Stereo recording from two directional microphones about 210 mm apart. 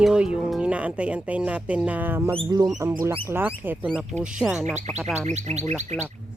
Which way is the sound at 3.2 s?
10° right (ahead or behind).